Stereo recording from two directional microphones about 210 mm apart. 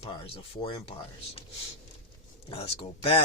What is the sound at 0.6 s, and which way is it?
Speech, 25° left (ahead or behind).